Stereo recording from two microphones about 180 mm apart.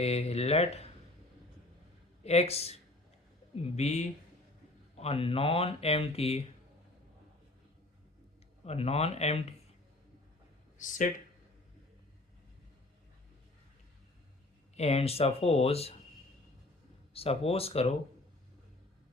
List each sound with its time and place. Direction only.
0.0 s speech: 35° left (ahead or behind)
2.2 s speech: 35° left (ahead or behind)
8.6 s speech: 35° left (ahead or behind)
10.8 s speech: 45° left (ahead or behind)
14.8 s speech: 35° left (ahead or behind)
17.2 s speech: 30° left (ahead or behind)